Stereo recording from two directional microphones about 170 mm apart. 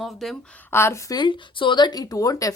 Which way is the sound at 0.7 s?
15° left (ahead or behind).